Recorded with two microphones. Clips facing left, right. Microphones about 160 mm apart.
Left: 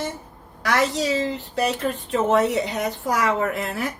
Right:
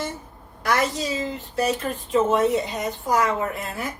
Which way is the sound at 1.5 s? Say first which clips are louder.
Even; 70° left (ahead or behind).